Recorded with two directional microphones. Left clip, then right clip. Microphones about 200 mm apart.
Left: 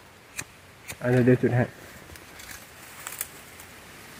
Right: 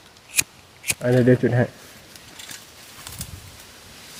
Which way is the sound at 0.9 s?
60° right (ahead or behind).